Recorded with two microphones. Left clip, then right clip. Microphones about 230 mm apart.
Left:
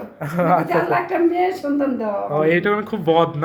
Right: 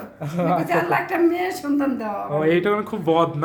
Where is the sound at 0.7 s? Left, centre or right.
Centre.